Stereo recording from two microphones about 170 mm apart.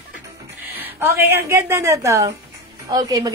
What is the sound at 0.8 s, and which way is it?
A woman's voice, 10° right (ahead or behind).